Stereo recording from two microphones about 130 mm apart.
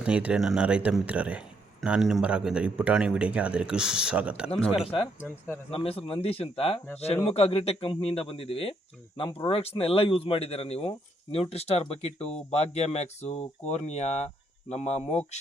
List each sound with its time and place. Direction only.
0.0 s speech: 10° right (ahead or behind)
5.7 s speech: 50° left (ahead or behind)